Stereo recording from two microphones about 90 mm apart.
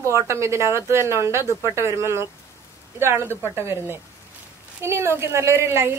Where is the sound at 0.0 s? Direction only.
30° right (ahead or behind).